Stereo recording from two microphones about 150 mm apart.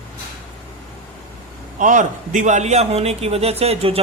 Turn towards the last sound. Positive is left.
turn(degrees=-40)  # may be behind; listen again after turning